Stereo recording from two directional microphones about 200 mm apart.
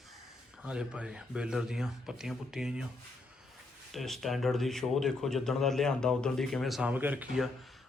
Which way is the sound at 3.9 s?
Centre (ahead or behind).